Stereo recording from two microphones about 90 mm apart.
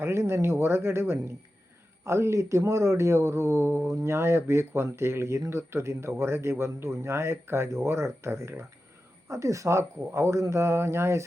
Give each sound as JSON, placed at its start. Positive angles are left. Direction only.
{"t": 0.0, "sound": "speech", "side_deg": -30}